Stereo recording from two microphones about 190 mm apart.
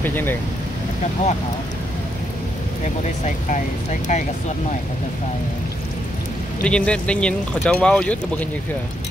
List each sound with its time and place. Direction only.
0.0 s speech: 10° left (ahead or behind)
3.3 s speech: 40° left (ahead or behind)
6.6 s speech: 5° left (ahead or behind)